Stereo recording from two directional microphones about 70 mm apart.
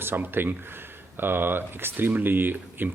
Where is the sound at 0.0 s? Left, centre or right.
Right.